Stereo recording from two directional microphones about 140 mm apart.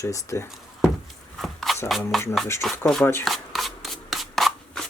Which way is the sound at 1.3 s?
Centre (ahead or behind).